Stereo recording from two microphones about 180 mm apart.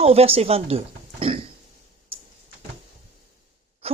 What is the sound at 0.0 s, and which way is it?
Speech, 35° right (ahead or behind).